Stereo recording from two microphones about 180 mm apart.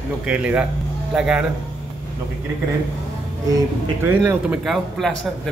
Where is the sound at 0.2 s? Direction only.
5° right (ahead or behind).